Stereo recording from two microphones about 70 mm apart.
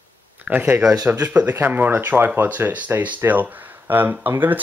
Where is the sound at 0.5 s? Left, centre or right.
Right.